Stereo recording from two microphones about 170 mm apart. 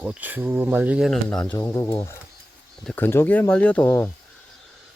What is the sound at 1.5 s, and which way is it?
Speech, 20° left (ahead or behind).